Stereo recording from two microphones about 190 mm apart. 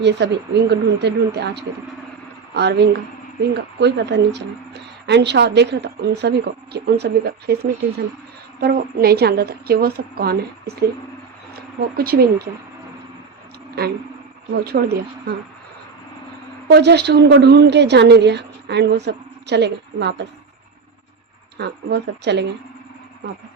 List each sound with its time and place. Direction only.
0.0 s speech: 65° right (ahead or behind)
11.9 s speech: 55° right (ahead or behind)
14.6 s speech: 55° right (ahead or behind)
16.6 s speech: 60° right (ahead or behind)
21.6 s speech: 65° right (ahead or behind)